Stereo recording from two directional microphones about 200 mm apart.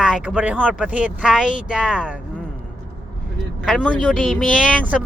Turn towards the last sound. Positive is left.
turn(degrees=0)  # may be behind; listen again after turning